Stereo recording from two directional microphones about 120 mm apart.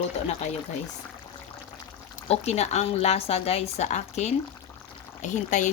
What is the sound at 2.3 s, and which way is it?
Speech, 60° left (ahead or behind).